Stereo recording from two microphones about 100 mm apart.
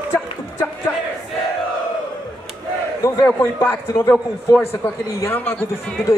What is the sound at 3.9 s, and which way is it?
Speech, 30° left (ahead or behind).